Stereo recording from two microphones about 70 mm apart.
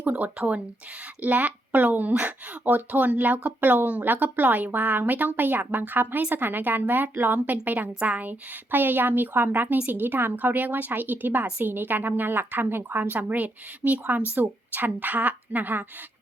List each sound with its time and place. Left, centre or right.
0.0 s speech: right